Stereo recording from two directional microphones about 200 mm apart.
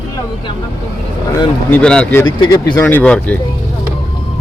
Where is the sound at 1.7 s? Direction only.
5° left (ahead or behind).